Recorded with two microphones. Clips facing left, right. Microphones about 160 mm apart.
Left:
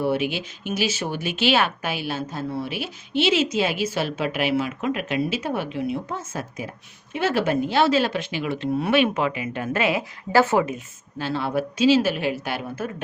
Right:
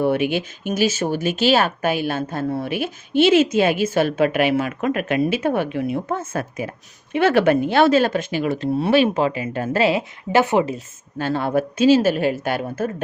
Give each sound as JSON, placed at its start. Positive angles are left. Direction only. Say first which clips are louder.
{"t": 0.0, "sound": "speech", "louder": "right 4 dB", "side_deg": -55}
{"t": 10.3, "sound": "speech", "louder": "right 2 dB", "side_deg": -20}
{"t": 11.2, "sound": "speech", "louder": "right 4 dB", "side_deg": -50}